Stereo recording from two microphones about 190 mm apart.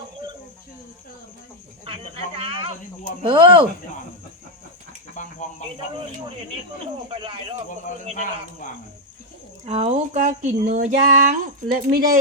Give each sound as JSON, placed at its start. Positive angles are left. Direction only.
{"t": 1.8, "sound": "a sound", "side_deg": -30}
{"t": 3.2, "sound": "speech", "side_deg": -25}
{"t": 5.1, "sound": "a sound", "side_deg": 40}
{"t": 7.1, "sound": "speech", "side_deg": -30}
{"t": 8.1, "sound": "speech", "side_deg": 40}
{"t": 9.6, "sound": "speech", "side_deg": -35}